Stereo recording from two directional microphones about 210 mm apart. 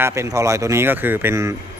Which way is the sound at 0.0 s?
15° right (ahead or behind).